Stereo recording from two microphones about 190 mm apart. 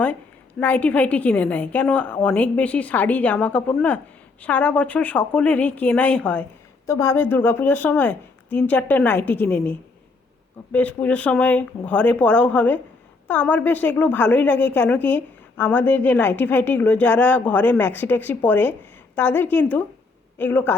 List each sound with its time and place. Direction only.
0.6 s a woman's voice: 10° left (ahead or behind)